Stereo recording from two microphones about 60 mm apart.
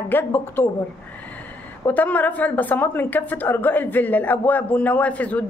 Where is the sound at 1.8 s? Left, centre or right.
Left.